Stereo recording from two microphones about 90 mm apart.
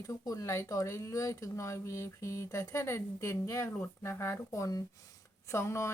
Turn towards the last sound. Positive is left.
turn(degrees=30)  # may be behind; listen again after turning